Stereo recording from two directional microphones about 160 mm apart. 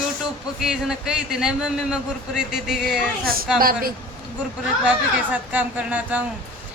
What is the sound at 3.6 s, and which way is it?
Speech, 65° right (ahead or behind).